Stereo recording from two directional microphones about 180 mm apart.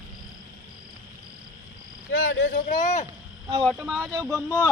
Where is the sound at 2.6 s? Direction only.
45° left (ahead or behind).